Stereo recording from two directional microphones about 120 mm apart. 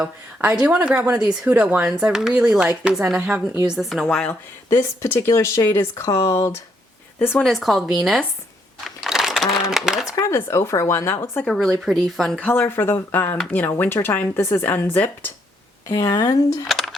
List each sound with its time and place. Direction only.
0.6 s speech: 10° right (ahead or behind)
3.7 s speech: centre (ahead or behind)
4.2 s speech: 20° left (ahead or behind)
7.4 s speech: centre (ahead or behind)
8.8 s a sound: centre (ahead or behind)
10.1 s speech: 25° left (ahead or behind)
11.5 s speech: centre (ahead or behind)
12.5 s speech: 15° left (ahead or behind)
16.0 s speech: 30° left (ahead or behind)
16.6 s a sound: centre (ahead or behind)